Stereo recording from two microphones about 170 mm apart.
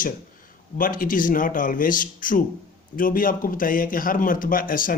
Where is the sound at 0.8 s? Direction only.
55° left (ahead or behind).